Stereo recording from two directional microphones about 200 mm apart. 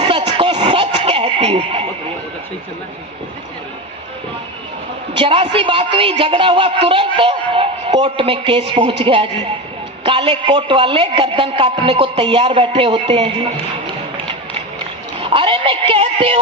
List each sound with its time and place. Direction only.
0.0 s a sound: 25° right (ahead or behind)
5.1 s a woman's voice: 25° right (ahead or behind)
15.2 s a woman's voice: 25° right (ahead or behind)